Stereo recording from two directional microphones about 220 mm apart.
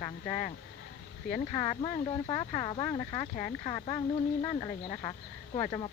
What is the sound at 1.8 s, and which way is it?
Speech, 20° left (ahead or behind).